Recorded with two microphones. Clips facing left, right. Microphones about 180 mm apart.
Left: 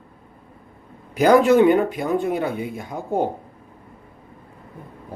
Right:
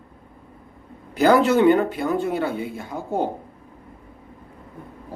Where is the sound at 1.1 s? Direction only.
15° left (ahead or behind).